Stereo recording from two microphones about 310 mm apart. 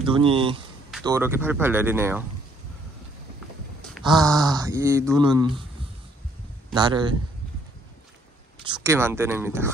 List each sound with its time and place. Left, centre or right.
0.0 s speech: centre
4.0 s speech: centre
6.7 s speech: centre
8.6 s speech: centre